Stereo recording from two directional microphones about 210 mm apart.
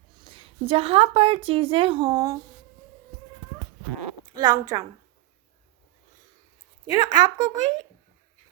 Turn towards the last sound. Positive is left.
turn(degrees=-20)  # may be behind; listen again after turning